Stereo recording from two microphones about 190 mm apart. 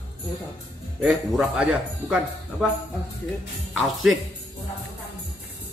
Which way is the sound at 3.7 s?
Centre (ahead or behind).